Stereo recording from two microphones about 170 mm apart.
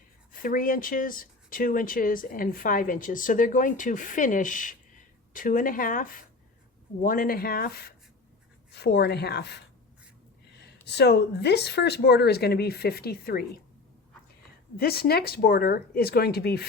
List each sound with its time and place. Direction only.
0.3 s speech: 55° left (ahead or behind); by 9.6 s 75° left (ahead or behind)
10.8 s speech: 80° left
14.8 s speech: 65° left (ahead or behind)